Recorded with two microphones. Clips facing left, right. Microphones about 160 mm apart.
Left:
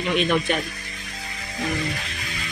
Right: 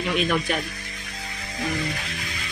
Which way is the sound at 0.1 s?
Centre (ahead or behind).